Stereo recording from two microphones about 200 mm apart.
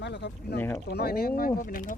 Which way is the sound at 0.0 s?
60° left (ahead or behind).